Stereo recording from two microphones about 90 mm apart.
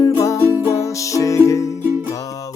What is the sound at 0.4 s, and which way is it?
Music, 25° right (ahead or behind).